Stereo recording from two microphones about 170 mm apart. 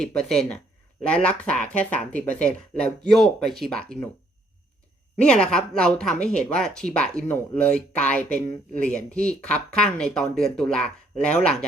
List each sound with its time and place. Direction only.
0.0 s speech: 5° left (ahead or behind)
5.2 s speech: 5° left (ahead or behind)